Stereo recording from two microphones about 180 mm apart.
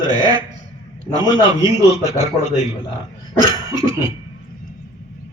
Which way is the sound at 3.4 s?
20° right (ahead or behind).